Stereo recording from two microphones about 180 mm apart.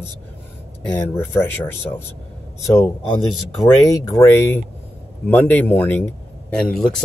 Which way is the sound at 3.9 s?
15° left (ahead or behind).